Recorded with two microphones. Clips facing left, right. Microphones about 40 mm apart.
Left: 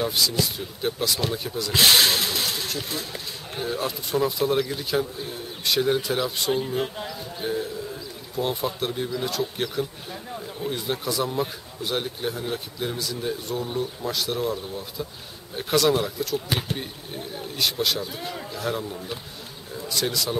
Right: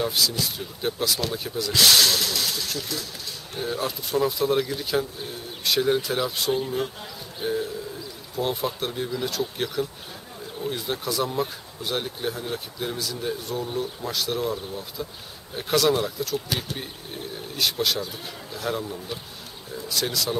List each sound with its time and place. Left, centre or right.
0.0 s speech: centre
1.7 s speech: left
3.6 s speech: centre
7.3 s a sound: centre
8.4 s speech: centre